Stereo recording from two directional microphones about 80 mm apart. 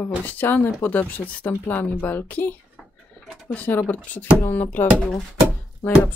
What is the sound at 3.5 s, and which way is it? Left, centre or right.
Speech, left.